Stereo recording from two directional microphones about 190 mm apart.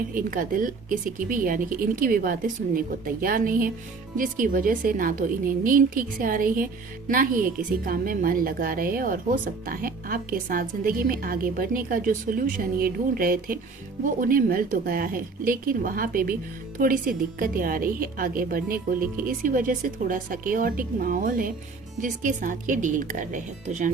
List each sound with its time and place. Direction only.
0.1 s a woman's voice: 45° right (ahead or behind)